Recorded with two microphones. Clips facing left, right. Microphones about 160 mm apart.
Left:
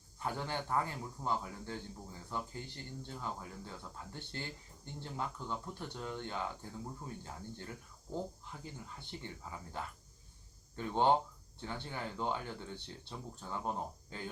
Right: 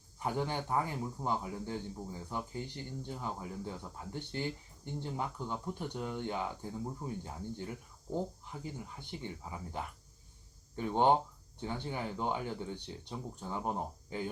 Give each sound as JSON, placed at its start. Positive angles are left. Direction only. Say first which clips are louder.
{"t": 0.2, "sound": "speech", "louder": "right 4 dB", "side_deg": -15}